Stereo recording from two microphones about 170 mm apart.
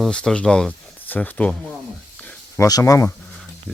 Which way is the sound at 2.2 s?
10° left (ahead or behind).